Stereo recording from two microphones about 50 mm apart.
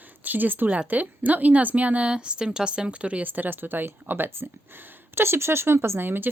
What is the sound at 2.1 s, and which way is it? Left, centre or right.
A woman's voice, centre.